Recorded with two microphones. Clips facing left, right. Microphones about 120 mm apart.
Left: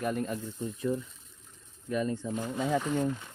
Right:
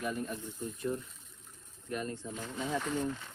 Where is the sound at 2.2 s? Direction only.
55° left (ahead or behind).